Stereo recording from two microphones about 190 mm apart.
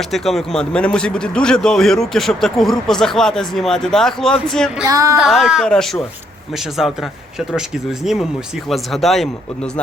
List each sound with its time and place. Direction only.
0.1 s a man's voice: centre (ahead or behind)
4.9 s speech: 15° right (ahead or behind)
5.1 s a man's voice: centre (ahead or behind)
8.0 s a man's voice: centre (ahead or behind)